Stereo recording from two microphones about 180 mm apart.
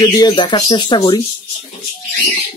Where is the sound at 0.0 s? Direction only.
20° left (ahead or behind).